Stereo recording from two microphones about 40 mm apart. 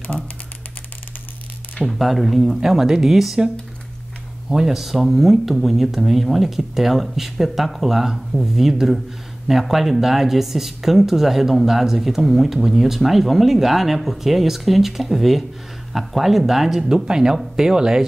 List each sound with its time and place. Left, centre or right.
1.9 s speech: centre
4.5 s speech: centre
4.7 s speech: centre
17.0 s speech: centre